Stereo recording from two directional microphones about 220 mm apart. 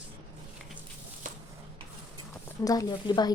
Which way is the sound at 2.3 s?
15° left (ahead or behind).